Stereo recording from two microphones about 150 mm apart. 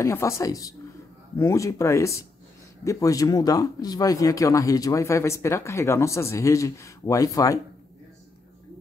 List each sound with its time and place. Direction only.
0.0 s speech: 20° left (ahead or behind)